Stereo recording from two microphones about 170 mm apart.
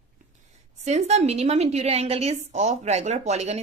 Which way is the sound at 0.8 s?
40° right (ahead or behind).